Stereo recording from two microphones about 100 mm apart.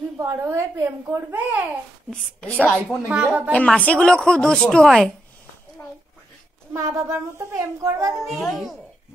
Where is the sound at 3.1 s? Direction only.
10° right (ahead or behind).